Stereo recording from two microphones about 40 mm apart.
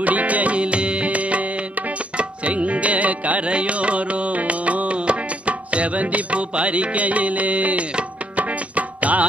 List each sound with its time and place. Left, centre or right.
0.0 s music: right